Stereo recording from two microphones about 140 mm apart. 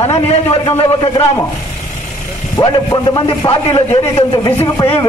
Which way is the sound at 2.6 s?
30° left (ahead or behind).